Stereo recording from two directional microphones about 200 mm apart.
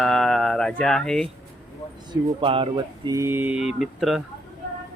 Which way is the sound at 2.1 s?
25° right (ahead or behind).